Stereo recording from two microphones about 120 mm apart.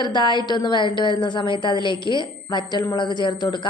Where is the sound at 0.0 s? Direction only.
40° left (ahead or behind).